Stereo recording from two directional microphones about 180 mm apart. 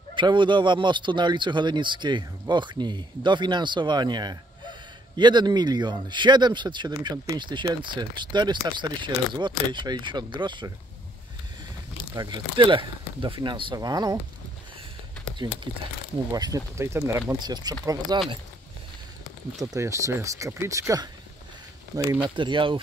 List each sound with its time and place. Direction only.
0.1 s speech: 25° right (ahead or behind)
12.2 s speech: 25° right (ahead or behind)
15.3 s speech: 25° right (ahead or behind)
19.7 s speech: 15° right (ahead or behind)
22.3 s speech: 25° right (ahead or behind)